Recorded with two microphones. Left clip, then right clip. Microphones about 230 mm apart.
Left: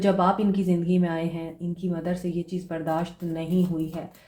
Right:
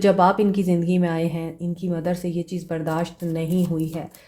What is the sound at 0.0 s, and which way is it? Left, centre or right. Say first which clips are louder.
A woman's voice: right 5 dB; right.